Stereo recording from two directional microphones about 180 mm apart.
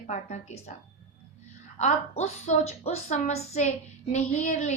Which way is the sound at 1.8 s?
40° left (ahead or behind).